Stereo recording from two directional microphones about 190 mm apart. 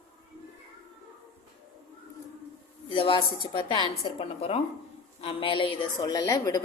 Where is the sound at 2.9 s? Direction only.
30° left (ahead or behind).